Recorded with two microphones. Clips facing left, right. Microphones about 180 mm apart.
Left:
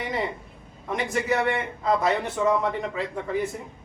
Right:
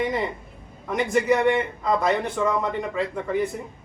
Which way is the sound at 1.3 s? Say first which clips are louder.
Right 4 dB; 5° left (ahead or behind).